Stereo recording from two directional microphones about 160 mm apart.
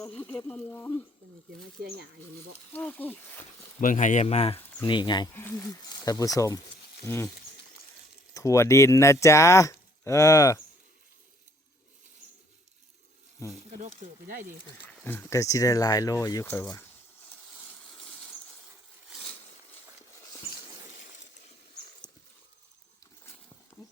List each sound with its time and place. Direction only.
0.2 s speech: 10° left (ahead or behind)
2.7 s speech: 10° left (ahead or behind)
3.8 s speech: 55° left (ahead or behind)
4.9 s speech: 30° left (ahead or behind)
5.3 s speech: 15° left (ahead or behind)
8.3 s speech: 20° left (ahead or behind)
13.8 s speech: 50° right (ahead or behind)
15.0 s speech: 15° left (ahead or behind)
19.1 s a sound: centre (ahead or behind)